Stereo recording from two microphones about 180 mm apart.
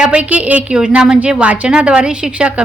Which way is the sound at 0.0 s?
5° right (ahead or behind).